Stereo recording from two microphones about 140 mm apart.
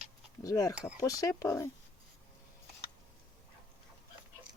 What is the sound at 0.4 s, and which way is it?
Speech, 25° left (ahead or behind).